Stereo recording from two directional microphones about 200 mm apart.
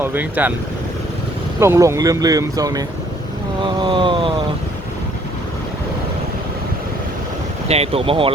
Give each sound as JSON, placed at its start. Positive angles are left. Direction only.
{"t": 0.0, "sound": "speech", "side_deg": -10}
{"t": 1.5, "sound": "speech", "side_deg": -15}
{"t": 3.6, "sound": "vehicle", "side_deg": -25}
{"t": 7.7, "sound": "speech", "side_deg": -30}